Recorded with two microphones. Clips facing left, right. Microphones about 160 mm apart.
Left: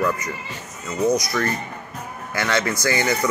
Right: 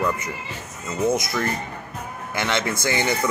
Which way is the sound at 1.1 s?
25° right (ahead or behind).